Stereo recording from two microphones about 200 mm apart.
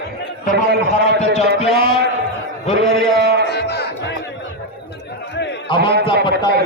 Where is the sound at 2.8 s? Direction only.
55° right (ahead or behind).